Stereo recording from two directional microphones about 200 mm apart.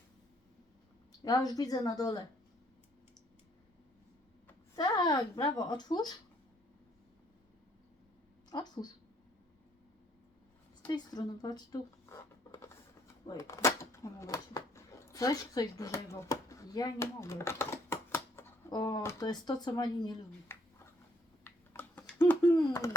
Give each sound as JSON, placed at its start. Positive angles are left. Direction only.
{"t": 1.2, "sound": "speech", "side_deg": 20}
{"t": 4.8, "sound": "speech", "side_deg": 20}
{"t": 8.4, "sound": "speech", "side_deg": 20}
{"t": 10.8, "sound": "a woman's voice", "side_deg": 20}
{"t": 13.2, "sound": "speech", "side_deg": 15}
{"t": 21.4, "sound": "typing", "side_deg": 10}